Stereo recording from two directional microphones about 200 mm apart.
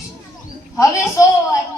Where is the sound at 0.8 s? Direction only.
15° left (ahead or behind).